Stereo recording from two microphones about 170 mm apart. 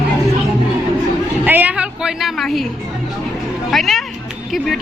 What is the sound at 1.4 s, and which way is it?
A woman's voice, 10° right (ahead or behind).